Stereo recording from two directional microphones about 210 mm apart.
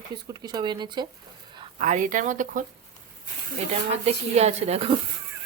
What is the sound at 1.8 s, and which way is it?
Speech, 35° right (ahead or behind).